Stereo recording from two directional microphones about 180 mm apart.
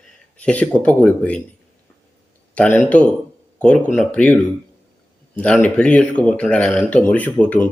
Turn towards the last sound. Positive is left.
turn(degrees=10)  # may be behind; listen again after turning